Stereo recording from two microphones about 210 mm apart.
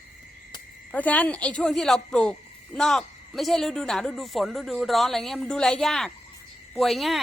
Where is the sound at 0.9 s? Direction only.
5° left (ahead or behind).